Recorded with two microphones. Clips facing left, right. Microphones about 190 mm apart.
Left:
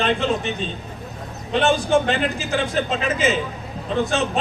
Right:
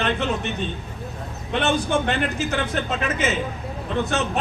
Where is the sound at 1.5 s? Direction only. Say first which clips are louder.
Left 4 dB; 60° right (ahead or behind).